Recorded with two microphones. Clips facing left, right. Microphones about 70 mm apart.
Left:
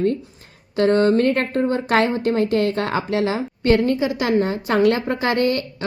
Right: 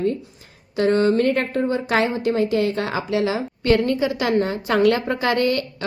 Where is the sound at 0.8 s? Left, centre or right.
Left.